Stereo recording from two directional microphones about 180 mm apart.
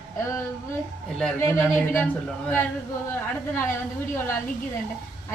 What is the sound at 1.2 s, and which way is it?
Speech, 10° left (ahead or behind).